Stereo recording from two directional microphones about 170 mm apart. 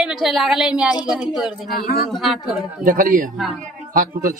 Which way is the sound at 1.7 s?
65° left (ahead or behind).